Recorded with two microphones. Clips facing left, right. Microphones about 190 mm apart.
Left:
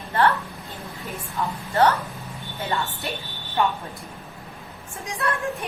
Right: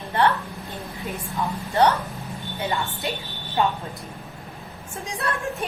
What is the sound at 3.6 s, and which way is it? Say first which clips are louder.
Speech: even; 20° right (ahead or behind).